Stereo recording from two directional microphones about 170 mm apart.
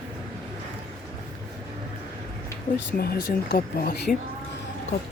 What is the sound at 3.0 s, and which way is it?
Speech, 60° left (ahead or behind).